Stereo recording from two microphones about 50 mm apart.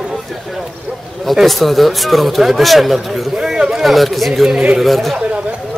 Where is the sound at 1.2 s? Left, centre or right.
Centre.